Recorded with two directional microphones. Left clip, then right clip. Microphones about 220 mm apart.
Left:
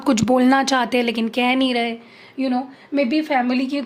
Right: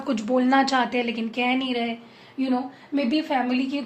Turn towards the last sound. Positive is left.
turn(degrees=55)  # may be behind; listen again after turning